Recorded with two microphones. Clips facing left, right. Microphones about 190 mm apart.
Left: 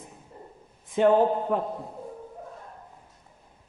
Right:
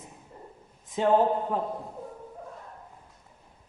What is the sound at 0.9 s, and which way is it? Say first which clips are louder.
Speech: left 3 dB; 65° left (ahead or behind).